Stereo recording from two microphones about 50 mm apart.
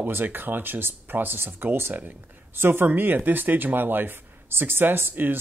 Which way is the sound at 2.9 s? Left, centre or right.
Right.